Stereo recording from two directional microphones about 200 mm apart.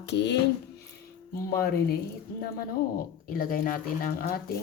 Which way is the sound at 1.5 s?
50° left (ahead or behind).